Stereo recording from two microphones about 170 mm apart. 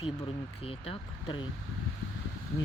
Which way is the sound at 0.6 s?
35° left (ahead or behind).